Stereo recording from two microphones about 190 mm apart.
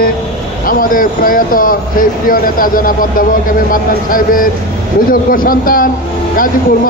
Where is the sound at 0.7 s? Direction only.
50° left (ahead or behind).